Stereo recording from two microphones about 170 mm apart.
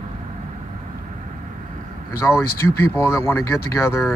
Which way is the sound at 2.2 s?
15° left (ahead or behind).